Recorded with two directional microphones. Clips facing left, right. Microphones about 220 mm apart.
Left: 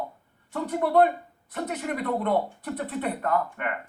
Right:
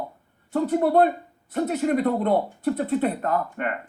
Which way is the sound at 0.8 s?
30° right (ahead or behind).